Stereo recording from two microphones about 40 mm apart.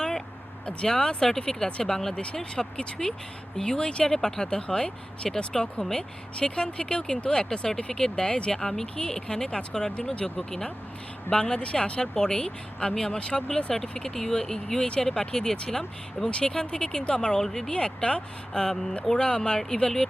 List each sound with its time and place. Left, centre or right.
0.9 s speech: centre
17.7 s speech: left